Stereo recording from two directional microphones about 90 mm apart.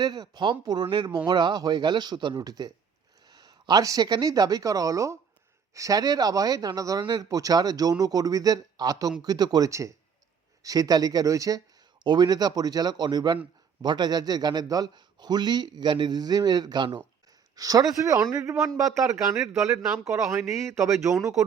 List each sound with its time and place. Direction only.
0.0 s a man's voice: 50° right (ahead or behind)
9.6 s a man's voice: 35° right (ahead or behind)
12.0 s a man's voice: 50° right (ahead or behind)
17.5 s speech: 40° right (ahead or behind)